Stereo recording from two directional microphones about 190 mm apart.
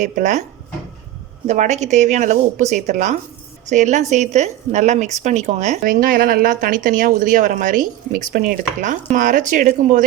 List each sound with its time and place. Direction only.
0.0 s speech: 40° right (ahead or behind)
1.5 s a woman's voice: 40° right (ahead or behind)